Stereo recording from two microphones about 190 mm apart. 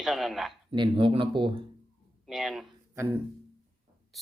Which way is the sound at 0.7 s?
25° right (ahead or behind).